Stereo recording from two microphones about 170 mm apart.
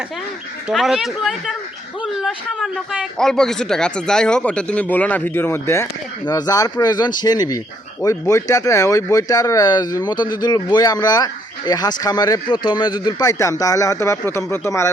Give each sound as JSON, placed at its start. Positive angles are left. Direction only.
{"t": 0.7, "sound": "a man's voice", "side_deg": 0}